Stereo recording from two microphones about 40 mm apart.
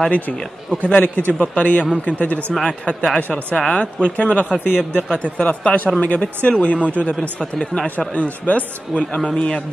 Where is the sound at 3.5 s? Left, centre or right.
Left.